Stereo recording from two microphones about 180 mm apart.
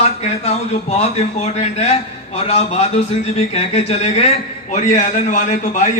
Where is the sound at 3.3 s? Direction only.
35° left (ahead or behind).